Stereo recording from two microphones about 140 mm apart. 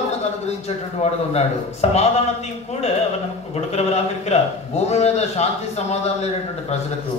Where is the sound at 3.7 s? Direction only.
50° left (ahead or behind).